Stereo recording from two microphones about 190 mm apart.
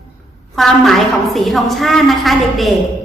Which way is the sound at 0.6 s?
Centre (ahead or behind).